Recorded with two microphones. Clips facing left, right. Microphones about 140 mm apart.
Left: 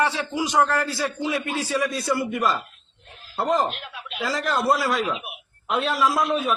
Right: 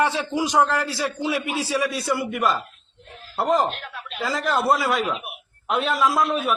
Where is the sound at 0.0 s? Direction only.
15° right (ahead or behind).